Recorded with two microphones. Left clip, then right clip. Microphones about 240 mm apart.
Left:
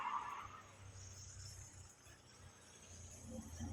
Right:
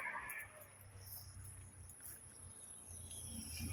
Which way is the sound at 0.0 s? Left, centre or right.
Left.